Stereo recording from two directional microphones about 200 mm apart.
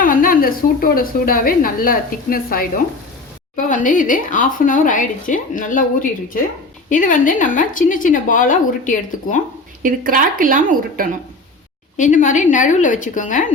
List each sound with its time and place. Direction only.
0.0 s a woman's voice: 45° left (ahead or behind)
9.8 s speech: 45° right (ahead or behind)
11.9 s speech: 40° left (ahead or behind)